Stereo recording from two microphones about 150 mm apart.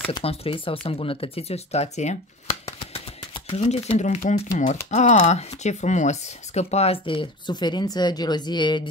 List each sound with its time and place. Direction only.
0.1 s speech: 40° left (ahead or behind)
3.4 s speech: 45° left (ahead or behind)